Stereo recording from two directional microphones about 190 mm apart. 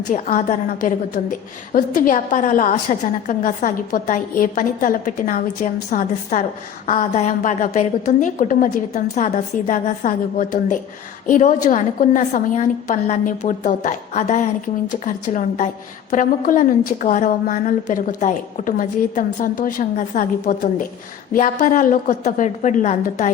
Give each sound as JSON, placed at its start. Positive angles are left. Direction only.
{"t": 0.1, "sound": "a woman's voice", "side_deg": 45}